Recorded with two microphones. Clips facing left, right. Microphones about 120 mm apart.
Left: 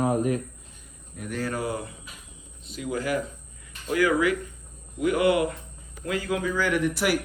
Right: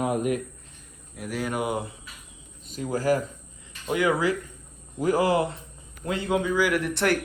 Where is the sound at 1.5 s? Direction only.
20° right (ahead or behind).